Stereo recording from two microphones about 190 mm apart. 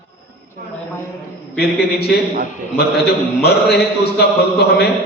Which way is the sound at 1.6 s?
55° left (ahead or behind).